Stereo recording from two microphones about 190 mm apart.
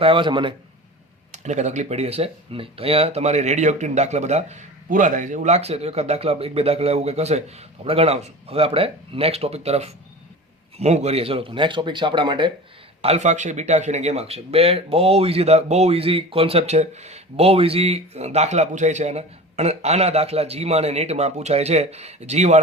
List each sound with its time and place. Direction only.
0.0 s speech: 25° right (ahead or behind)
1.3 s speech: 40° right (ahead or behind)